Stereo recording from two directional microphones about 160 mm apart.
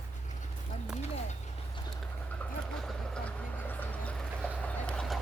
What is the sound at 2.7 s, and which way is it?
Vehicle, 5° left (ahead or behind).